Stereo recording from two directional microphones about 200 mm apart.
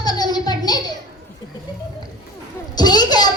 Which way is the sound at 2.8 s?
20° left (ahead or behind).